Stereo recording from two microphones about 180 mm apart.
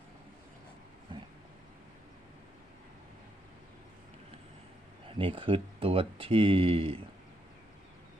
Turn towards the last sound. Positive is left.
turn(degrees=-30)  # may be behind; listen again after turning